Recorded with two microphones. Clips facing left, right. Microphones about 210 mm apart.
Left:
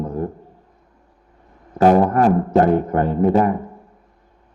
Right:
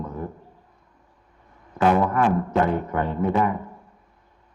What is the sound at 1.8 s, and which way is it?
A man's voice, 40° left (ahead or behind).